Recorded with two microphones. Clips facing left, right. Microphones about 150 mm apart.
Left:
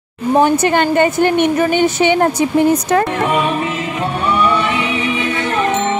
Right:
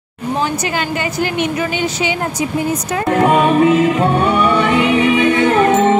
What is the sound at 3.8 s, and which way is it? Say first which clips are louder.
Music: right 7 dB; 55° right (ahead or behind).